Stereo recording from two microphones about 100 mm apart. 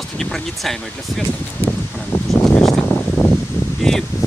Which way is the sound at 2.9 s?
20° left (ahead or behind).